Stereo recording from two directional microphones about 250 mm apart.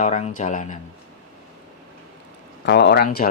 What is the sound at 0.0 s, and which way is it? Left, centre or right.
Speech, left.